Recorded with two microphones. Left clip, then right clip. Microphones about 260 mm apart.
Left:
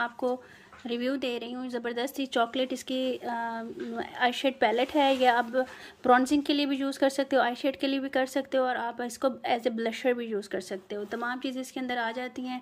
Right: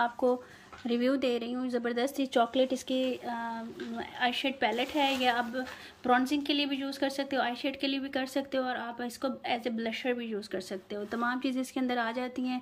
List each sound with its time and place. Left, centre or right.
0.2 s speech: centre